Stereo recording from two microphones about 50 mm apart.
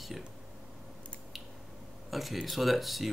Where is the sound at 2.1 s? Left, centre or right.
Centre.